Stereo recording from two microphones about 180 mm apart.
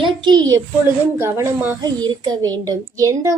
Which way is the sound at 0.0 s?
25° right (ahead or behind).